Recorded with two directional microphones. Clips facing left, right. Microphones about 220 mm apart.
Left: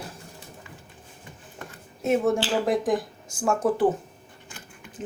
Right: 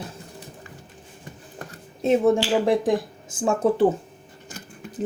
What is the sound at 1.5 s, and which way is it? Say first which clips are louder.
Speech: right 2 dB; 30° right (ahead or behind).